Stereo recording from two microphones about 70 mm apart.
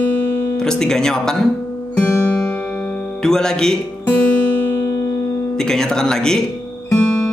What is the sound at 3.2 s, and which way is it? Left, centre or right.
Speech, centre.